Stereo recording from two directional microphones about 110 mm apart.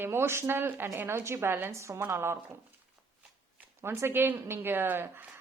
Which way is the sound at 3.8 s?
20° right (ahead or behind).